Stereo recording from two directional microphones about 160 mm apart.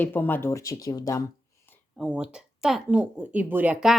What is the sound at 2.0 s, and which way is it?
Speech, 5° right (ahead or behind).